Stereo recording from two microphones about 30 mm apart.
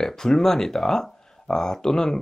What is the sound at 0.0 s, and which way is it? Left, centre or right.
Speech, centre.